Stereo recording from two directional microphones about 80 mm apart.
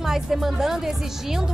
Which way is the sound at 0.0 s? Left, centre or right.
Centre.